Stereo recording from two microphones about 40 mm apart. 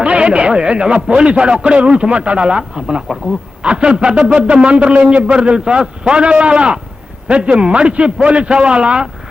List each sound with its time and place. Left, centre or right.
0.0 s a man's voice: right